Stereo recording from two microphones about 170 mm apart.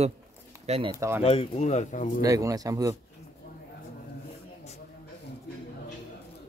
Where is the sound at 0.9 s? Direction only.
15° right (ahead or behind).